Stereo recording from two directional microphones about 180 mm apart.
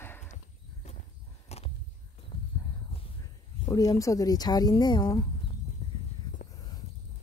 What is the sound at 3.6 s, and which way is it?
Speech, 20° left (ahead or behind).